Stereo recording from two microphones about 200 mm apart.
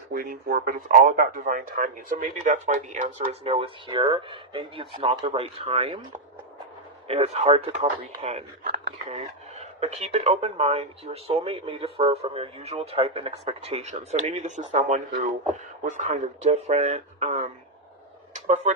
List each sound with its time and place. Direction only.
0.1 s speech: 45° right (ahead or behind); by 6.0 s 30° right (ahead or behind)
7.1 s speech: 30° right (ahead or behind)
9.8 s speech: 30° right (ahead or behind)